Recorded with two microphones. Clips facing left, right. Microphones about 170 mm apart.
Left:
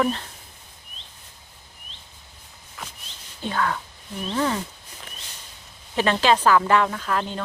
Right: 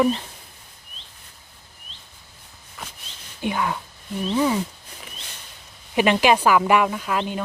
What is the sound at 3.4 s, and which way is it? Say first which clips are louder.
Speech: right 1 dB; 15° right (ahead or behind).